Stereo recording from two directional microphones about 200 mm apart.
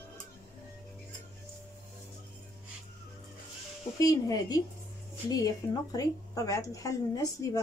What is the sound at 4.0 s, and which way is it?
Speech, 15° left (ahead or behind).